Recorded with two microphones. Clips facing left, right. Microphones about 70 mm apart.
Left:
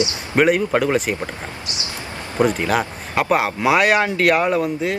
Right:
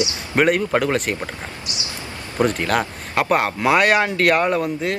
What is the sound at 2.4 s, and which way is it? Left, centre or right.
Speech, centre.